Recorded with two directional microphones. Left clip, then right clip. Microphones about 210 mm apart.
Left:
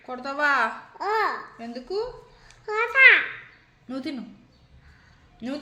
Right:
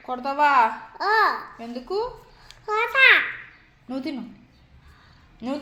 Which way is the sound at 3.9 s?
10° left (ahead or behind).